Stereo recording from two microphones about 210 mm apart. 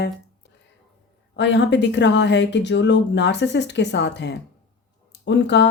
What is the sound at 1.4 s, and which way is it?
Speech, 55° left (ahead or behind).